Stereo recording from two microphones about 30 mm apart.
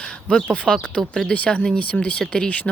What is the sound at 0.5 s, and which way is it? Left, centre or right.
Speech, left.